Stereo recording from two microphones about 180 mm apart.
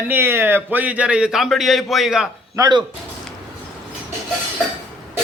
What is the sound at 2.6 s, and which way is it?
Speech, 25° right (ahead or behind).